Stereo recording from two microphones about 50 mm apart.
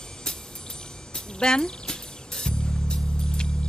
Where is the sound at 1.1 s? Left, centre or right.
Centre.